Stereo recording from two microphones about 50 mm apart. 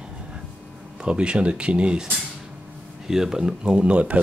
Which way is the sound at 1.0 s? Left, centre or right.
Centre.